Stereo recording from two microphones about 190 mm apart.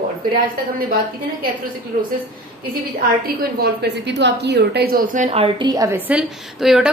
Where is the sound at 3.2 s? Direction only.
55° right (ahead or behind); by 6.0 s 15° right (ahead or behind).